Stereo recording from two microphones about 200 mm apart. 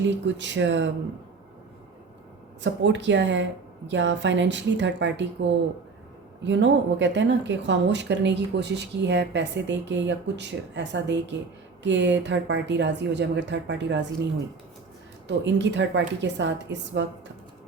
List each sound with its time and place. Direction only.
0.3 s speech: 65° right (ahead or behind)
2.6 s speech: 65° right (ahead or behind)
15.3 s speech: 65° right (ahead or behind)